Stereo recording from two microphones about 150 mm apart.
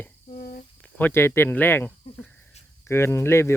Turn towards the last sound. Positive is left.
turn(degrees=15)  # may be behind; listen again after turning